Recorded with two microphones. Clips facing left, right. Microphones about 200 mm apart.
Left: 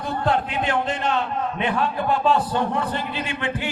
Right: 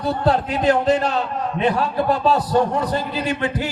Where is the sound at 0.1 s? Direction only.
40° right (ahead or behind).